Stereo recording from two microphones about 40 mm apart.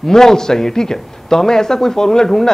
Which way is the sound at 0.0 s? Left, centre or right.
Centre.